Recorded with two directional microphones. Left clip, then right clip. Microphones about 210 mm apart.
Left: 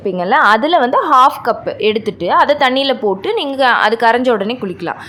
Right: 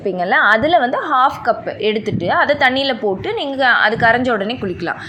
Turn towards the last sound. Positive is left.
turn(degrees=15)  # may be behind; listen again after turning